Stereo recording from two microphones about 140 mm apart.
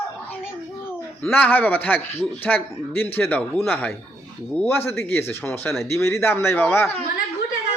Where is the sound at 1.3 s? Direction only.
10° left (ahead or behind).